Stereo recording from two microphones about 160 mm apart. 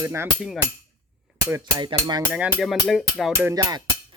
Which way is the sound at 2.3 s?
5° right (ahead or behind).